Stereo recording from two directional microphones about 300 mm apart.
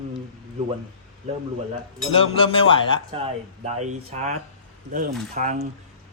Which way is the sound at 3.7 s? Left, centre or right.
Right.